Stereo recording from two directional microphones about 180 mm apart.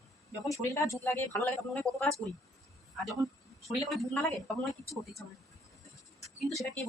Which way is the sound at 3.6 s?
Centre (ahead or behind).